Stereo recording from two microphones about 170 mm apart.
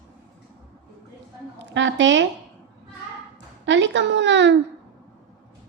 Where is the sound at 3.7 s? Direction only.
90° right.